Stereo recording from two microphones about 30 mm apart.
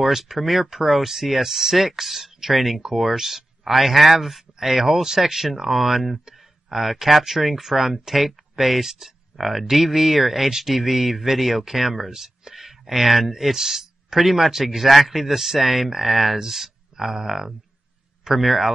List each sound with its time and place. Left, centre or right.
0.0 s speech: centre